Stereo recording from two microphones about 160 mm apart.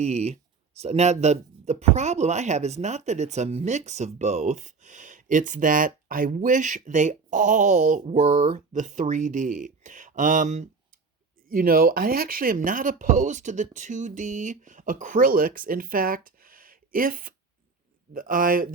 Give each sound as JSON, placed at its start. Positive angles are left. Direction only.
{"t": 0.0, "sound": "speech", "side_deg": -45}
{"t": 11.4, "sound": "speech", "side_deg": -65}